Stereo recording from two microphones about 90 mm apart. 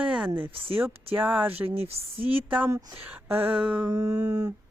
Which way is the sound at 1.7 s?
90° right.